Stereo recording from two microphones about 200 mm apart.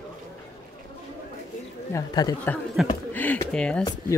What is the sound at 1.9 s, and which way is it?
Speech, 15° left (ahead or behind).